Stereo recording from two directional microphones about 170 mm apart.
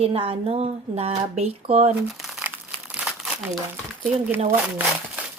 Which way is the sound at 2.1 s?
Centre (ahead or behind).